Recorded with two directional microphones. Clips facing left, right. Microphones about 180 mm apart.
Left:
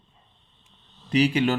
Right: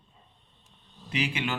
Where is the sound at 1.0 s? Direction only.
40° left (ahead or behind).